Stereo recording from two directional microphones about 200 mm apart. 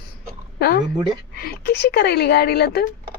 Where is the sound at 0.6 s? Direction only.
55° left (ahead or behind).